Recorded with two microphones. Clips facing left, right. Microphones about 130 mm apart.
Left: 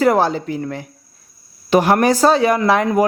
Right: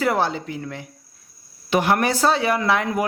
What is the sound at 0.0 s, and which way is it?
Speech, 40° left (ahead or behind).